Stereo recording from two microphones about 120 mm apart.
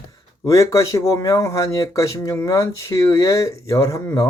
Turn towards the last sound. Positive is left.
turn(degrees=25)  # may be behind; listen again after turning